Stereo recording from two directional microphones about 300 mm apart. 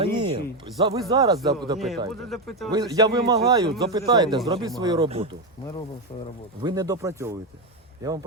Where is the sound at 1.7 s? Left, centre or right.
Centre.